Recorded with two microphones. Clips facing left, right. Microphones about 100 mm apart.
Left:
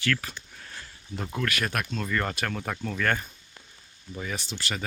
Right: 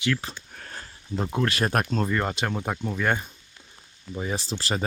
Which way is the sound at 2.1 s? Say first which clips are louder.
Right 3 dB; 20° right (ahead or behind).